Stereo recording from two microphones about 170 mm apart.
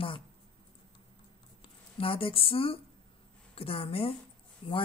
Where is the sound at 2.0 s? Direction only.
30° left (ahead or behind).